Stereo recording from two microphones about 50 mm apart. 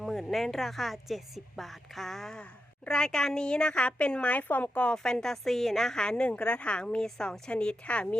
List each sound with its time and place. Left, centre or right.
0.0 s a woman's voice: centre; by 4.9 s left
5.0 s a woman's voice: centre